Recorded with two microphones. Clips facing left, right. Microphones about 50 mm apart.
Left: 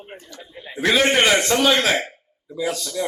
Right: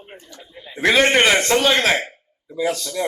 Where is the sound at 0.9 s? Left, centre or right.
Right.